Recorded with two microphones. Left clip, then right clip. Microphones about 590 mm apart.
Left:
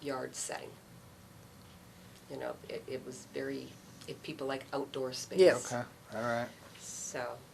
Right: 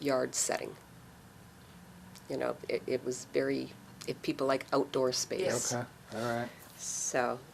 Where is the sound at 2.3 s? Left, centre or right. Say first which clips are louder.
Right 7 dB; right.